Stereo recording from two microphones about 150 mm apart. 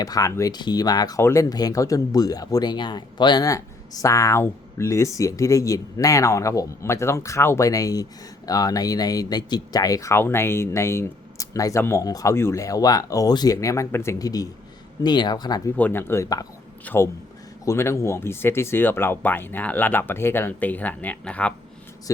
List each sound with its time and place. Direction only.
0.0 s speech: 25° left (ahead or behind)
15.7 s speech: 10° left (ahead or behind)